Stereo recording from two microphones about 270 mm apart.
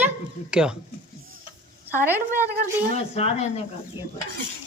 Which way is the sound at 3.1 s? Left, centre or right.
Left.